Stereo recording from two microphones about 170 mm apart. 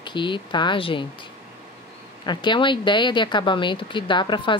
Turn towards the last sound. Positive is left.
turn(degrees=30)  # may be behind; listen again after turning